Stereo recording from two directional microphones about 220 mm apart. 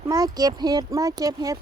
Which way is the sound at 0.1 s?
15° right (ahead or behind).